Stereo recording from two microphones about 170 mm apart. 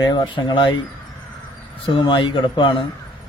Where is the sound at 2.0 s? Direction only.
30° left (ahead or behind).